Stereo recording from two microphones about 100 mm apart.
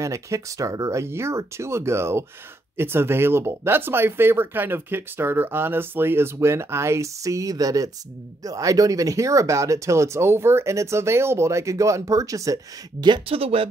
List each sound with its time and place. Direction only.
0.0 s speech: 30° right (ahead or behind)
13.3 s speech: 75° right (ahead or behind)